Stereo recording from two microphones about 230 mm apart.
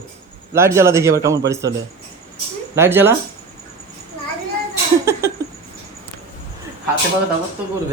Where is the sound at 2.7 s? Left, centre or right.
Centre.